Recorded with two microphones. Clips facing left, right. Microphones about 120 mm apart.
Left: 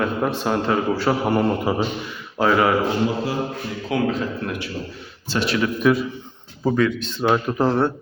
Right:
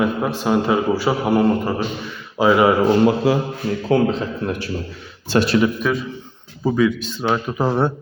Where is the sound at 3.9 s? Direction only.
30° right (ahead or behind).